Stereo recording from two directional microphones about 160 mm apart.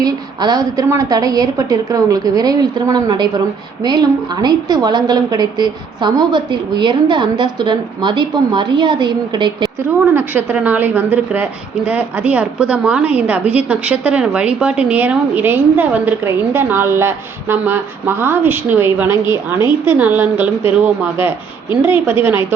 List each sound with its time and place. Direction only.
0.0 s a woman's voice: 25° right (ahead or behind)
10.2 s a woman's voice: 10° right (ahead or behind)